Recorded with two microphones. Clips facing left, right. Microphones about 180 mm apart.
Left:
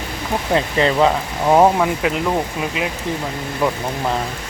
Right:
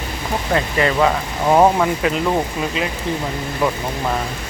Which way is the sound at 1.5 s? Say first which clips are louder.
Even; 5° left (ahead or behind).